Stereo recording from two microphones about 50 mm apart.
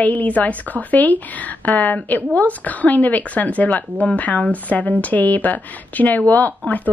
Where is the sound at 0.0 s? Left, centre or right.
Left.